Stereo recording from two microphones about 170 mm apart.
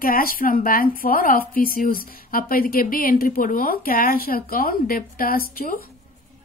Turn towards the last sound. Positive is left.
turn(degrees=60)  # may be behind; listen again after turning